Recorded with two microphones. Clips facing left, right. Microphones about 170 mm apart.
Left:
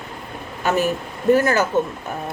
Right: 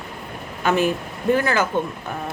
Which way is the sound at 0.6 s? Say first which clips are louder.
Even; 40° left (ahead or behind).